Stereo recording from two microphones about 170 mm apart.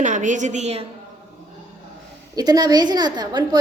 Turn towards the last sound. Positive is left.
turn(degrees=-25)  # may be behind; listen again after turning